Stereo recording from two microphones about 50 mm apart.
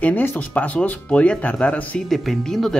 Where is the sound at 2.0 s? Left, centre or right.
Centre.